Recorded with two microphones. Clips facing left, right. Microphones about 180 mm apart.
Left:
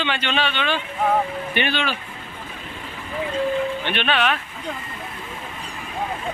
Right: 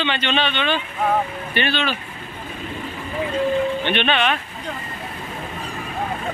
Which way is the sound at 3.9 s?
5° left (ahead or behind).